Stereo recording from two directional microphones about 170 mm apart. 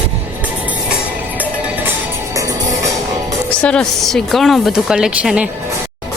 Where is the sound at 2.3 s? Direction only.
20° right (ahead or behind).